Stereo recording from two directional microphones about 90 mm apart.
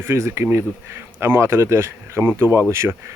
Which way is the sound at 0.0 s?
30° right (ahead or behind).